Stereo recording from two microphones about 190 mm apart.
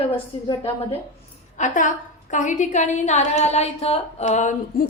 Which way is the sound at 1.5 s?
40° left (ahead or behind).